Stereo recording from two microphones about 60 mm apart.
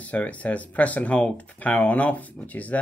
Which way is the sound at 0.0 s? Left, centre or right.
Left.